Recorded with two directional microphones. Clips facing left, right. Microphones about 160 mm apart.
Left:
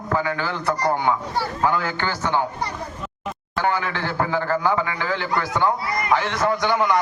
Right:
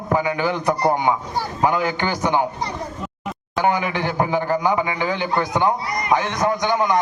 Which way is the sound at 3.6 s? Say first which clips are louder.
Right 3 dB; 15° right (ahead or behind).